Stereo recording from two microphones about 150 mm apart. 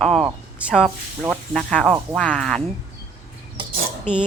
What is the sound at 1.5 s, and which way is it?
Speech, 5° left (ahead or behind).